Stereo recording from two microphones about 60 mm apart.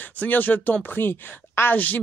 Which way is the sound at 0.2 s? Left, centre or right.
Left.